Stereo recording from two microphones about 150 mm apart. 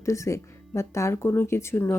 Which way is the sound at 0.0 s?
20° left (ahead or behind).